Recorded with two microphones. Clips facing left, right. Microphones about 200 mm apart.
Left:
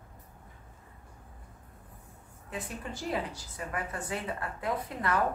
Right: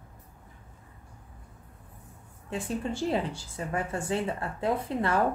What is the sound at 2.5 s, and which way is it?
A woman's voice, 30° right (ahead or behind).